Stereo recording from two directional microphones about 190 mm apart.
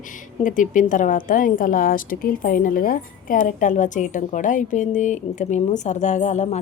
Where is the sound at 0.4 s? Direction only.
45° left (ahead or behind).